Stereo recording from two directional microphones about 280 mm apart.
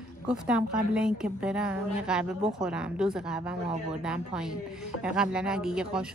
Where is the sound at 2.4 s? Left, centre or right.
Right.